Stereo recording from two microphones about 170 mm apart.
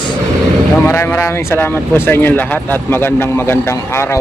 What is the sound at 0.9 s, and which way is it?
Speech, 10° left (ahead or behind).